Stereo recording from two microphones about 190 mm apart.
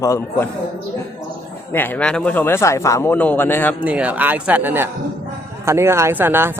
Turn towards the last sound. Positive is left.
turn(degrees=-10)  # may be behind; listen again after turning